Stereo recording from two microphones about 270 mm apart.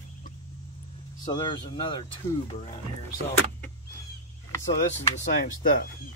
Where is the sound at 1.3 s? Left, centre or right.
Centre.